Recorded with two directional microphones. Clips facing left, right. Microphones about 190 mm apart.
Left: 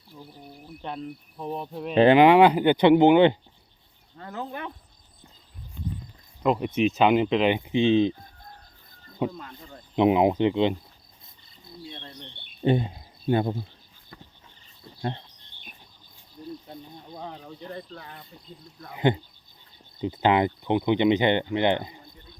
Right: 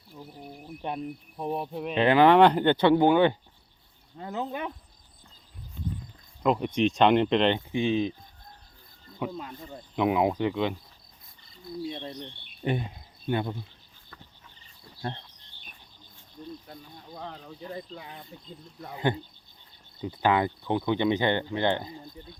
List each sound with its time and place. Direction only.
0.2 s speech: 15° right (ahead or behind)
2.1 s speech: 10° left (ahead or behind)
4.2 s speech: 20° right (ahead or behind)
6.4 s speech: centre (ahead or behind); by 8.1 s 25° left (ahead or behind)
9.4 s speech: 10° right (ahead or behind)
9.9 s speech: 25° left (ahead or behind)
11.9 s speech: 20° right (ahead or behind)
12.6 s speech: 30° left (ahead or behind)
17.2 s speech: 5° left (ahead or behind); by 18.3 s 15° right (ahead or behind)
18.9 s speech: 15° left (ahead or behind)